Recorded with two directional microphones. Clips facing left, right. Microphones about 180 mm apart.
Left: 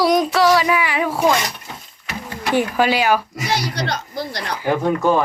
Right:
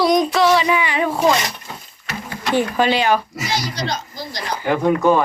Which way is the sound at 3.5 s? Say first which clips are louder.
Left 2 dB; 65° left (ahead or behind).